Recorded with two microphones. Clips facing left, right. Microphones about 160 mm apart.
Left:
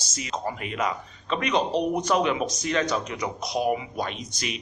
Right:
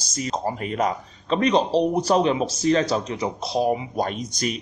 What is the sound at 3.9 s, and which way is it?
Speech, 40° right (ahead or behind).